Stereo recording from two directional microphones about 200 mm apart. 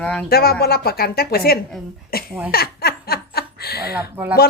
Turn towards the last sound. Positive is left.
turn(degrees=-10)  # may be behind; listen again after turning